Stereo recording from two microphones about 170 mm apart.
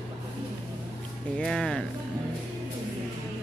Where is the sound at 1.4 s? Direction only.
5° left (ahead or behind).